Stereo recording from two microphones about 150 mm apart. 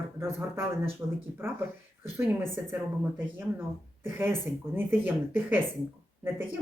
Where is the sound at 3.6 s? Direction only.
15° right (ahead or behind).